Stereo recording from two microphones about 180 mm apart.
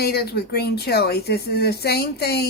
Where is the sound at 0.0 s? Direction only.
60° left (ahead or behind).